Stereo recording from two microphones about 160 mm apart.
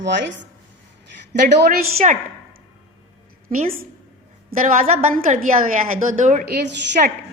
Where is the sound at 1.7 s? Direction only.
50° right (ahead or behind).